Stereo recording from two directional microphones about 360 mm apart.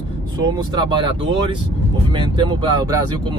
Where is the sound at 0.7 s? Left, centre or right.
Centre.